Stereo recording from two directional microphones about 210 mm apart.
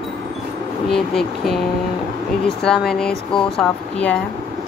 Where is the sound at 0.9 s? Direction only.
Centre (ahead or behind).